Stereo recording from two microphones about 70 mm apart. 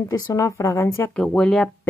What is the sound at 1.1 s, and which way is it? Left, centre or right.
Speech, centre.